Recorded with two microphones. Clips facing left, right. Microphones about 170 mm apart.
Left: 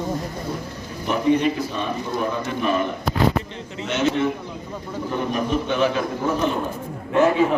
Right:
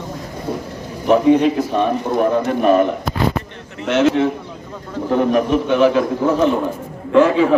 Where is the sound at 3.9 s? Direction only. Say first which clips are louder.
Right 7 dB; 90° right.